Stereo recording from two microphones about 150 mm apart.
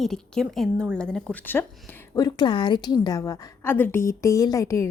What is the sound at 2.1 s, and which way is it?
A woman's voice, 25° left (ahead or behind).